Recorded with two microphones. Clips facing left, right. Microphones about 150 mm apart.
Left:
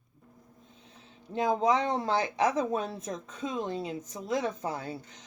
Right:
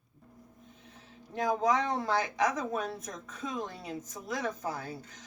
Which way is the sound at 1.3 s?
25° left (ahead or behind).